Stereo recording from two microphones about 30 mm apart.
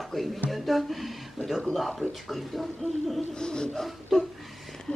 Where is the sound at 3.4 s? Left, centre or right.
Left.